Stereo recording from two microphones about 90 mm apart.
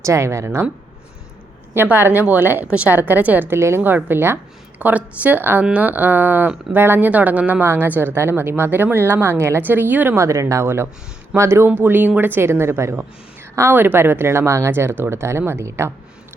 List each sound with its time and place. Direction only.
0.0 s speech: 35° right (ahead or behind)
1.7 s speech: 25° right (ahead or behind)
10.2 s speech: 35° right (ahead or behind)